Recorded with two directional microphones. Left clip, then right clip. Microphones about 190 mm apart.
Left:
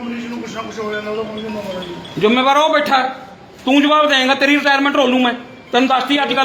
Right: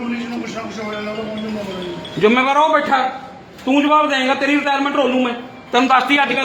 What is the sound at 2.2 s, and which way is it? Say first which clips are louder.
A man's voice: left 1 dB; 20° left (ahead or behind).